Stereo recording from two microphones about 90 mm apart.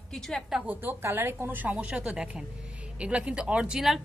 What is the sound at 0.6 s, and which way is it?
A woman's voice, 20° right (ahead or behind).